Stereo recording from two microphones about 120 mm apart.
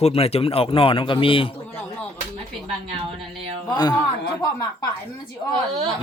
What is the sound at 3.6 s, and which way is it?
Speech, 35° left (ahead or behind).